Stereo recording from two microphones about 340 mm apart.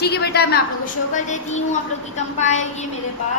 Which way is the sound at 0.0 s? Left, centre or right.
Left.